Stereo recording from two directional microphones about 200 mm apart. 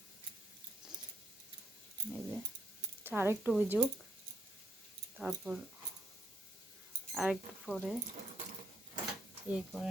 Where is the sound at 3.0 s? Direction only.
10° right (ahead or behind).